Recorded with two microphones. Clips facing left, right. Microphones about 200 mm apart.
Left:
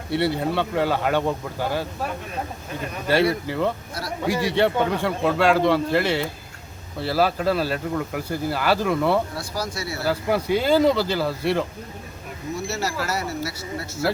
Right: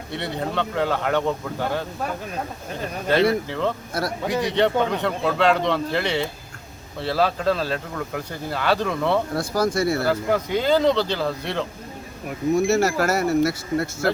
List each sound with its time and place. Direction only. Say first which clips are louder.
0.1 s a man's voice: left 5 dB; 5° left (ahead or behind)
3.4 s a man's voice: left 1 dB; 10° left (ahead or behind)
9.3 s speech: right 8 dB; 50° right (ahead or behind)
10.1 s a man's voice: even; 10° left (ahead or behind)
12.5 s speech: right 8 dB; 50° right (ahead or behind)